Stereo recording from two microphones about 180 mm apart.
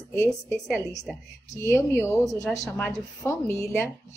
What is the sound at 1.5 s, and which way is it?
Speech, 15° left (ahead or behind).